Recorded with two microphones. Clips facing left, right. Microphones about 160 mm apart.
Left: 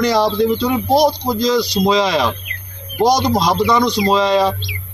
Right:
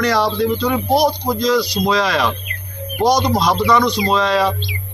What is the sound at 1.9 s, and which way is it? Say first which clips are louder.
Speech: left 2 dB; 25° left (ahead or behind).